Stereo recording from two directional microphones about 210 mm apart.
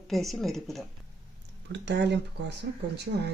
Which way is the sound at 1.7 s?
55° right (ahead or behind).